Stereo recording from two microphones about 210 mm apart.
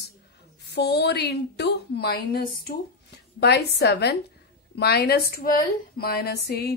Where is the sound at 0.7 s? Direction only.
50° left (ahead or behind).